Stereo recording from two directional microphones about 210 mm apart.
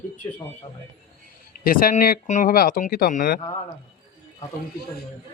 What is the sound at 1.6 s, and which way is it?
Speech, 40° left (ahead or behind).